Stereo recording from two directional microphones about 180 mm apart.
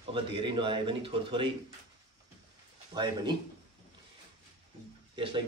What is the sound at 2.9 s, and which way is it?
Speech, 25° right (ahead or behind).